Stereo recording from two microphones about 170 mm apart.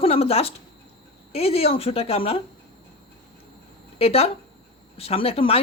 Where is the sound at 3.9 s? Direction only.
35° left (ahead or behind).